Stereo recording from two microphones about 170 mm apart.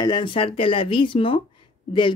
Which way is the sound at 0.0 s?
30° left (ahead or behind).